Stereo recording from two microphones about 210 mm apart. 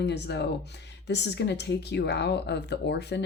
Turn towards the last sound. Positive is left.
turn(degrees=55)  # may be behind; listen again after turning